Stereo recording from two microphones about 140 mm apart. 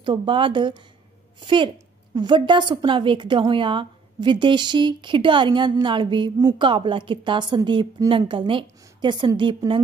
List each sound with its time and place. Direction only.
0.0 s a woman's voice: 35° right (ahead or behind)